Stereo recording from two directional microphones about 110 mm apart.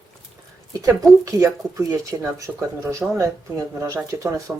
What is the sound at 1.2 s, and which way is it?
Speech, 30° right (ahead or behind).